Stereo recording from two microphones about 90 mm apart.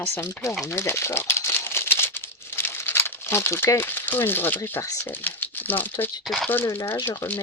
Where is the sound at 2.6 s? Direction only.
25° left (ahead or behind).